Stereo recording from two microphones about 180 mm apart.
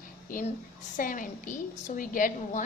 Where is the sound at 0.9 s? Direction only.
50° left (ahead or behind).